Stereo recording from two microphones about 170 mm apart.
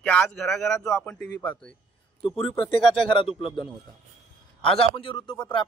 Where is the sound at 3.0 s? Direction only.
30° left (ahead or behind).